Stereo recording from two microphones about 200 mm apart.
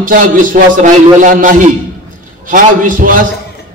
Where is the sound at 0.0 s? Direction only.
40° right (ahead or behind).